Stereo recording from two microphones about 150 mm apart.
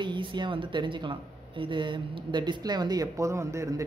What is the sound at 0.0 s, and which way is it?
Speech, 30° right (ahead or behind).